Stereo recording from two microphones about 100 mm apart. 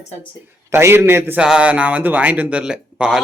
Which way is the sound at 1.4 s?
10° right (ahead or behind).